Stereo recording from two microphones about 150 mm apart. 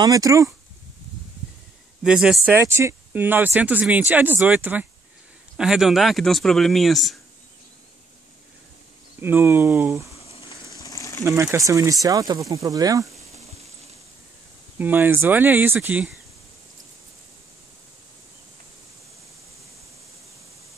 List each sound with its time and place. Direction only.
0.0 s speech: 25° right (ahead or behind)
2.0 s speech: 5° right (ahead or behind)
9.2 s speech: 15° right (ahead or behind)
10.1 s a sound: 40° left (ahead or behind)
10.8 s a sound: 20° left (ahead or behind)
11.5 s speech: 20° right (ahead or behind)
14.8 s speech: 15° right (ahead or behind)